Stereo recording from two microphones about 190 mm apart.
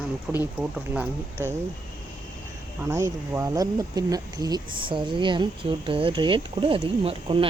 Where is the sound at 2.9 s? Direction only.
10° right (ahead or behind).